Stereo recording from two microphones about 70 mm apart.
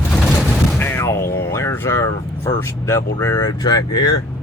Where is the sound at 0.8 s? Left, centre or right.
Left.